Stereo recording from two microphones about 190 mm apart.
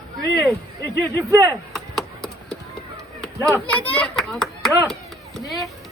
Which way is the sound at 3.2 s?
5° left (ahead or behind).